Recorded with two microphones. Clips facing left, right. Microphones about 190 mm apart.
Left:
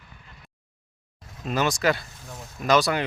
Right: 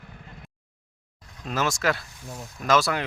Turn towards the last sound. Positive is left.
turn(degrees=0)  # may be behind; listen again after turning